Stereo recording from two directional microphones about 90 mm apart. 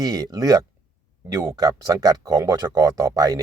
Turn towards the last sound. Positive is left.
turn(degrees=-45)  # may be behind; listen again after turning